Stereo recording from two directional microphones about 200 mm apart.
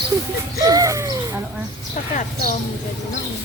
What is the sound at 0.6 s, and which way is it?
Speech, 15° right (ahead or behind).